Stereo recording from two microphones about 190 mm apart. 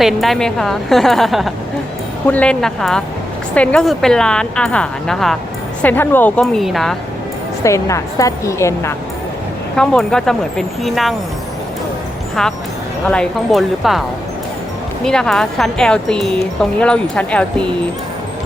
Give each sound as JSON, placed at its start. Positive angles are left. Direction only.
{"t": 0.0, "sound": "speech", "side_deg": 0}
{"t": 7.6, "sound": "a woman's voice", "side_deg": 15}
{"t": 9.7, "sound": "speech", "side_deg": 5}
{"t": 12.4, "sound": "speech", "side_deg": 0}
{"t": 15.0, "sound": "speech", "side_deg": 5}